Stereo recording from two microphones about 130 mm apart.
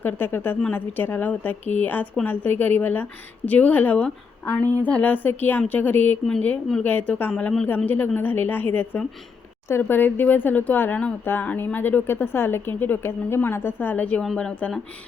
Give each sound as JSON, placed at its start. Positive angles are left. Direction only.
{"t": 0.0, "sound": "a woman's voice", "side_deg": 15}